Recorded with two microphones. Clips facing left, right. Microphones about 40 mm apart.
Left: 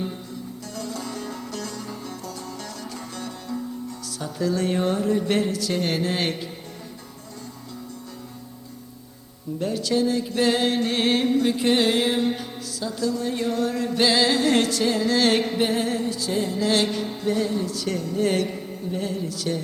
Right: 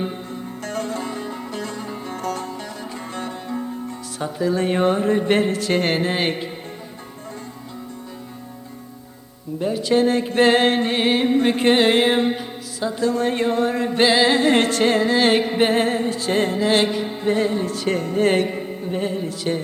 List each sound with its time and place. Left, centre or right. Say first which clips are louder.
0.6 s music: right 7 dB; right
2.2 s music: right 9 dB; right
3.2 s music: right 4 dB; right
9.6 s speech: right 4 dB; centre
9.9 s music: right 6 dB; right
12.3 s music: right 3 dB; right
14.7 s music: right 5 dB; right
15.0 s music: right 3 dB; right
15.5 s music: right 5 dB; right
16.6 s music: right 4 dB; right